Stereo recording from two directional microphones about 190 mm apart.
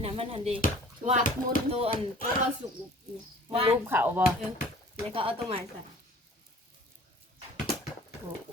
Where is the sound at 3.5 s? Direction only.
30° right (ahead or behind).